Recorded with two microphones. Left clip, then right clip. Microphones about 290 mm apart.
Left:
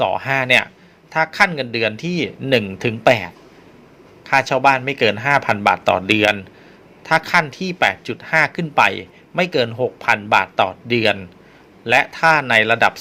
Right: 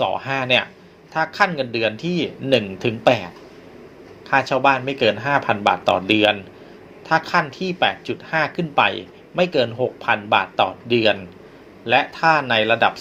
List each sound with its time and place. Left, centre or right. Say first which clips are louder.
0.0 s speech: left 3 dB; left
4.4 s speech: left 2 dB; left
7.0 s speech: left 3 dB; left